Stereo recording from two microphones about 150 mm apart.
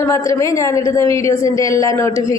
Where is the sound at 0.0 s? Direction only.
20° left (ahead or behind).